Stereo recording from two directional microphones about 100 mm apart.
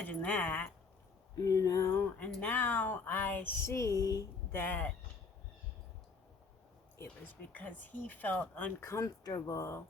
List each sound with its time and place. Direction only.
0.0 s speech: 15° left (ahead or behind)
1.4 s speech: 35° left (ahead or behind)
1.9 s speech: 20° left (ahead or behind)
3.7 s speech: 30° left (ahead or behind)
4.5 s speech: 20° left (ahead or behind)
7.5 s speech: 15° left (ahead or behind)
8.9 s speech: 35° left (ahead or behind)